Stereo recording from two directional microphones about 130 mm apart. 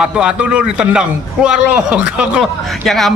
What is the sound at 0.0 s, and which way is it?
A man's voice, 10° right (ahead or behind).